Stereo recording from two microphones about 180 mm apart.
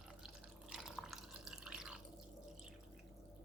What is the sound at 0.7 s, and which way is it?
Drip, 5° right (ahead or behind).